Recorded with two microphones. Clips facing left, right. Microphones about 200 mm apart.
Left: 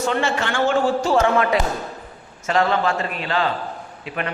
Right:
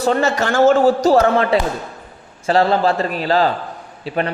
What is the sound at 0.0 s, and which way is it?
A man's voice, 40° right (ahead or behind).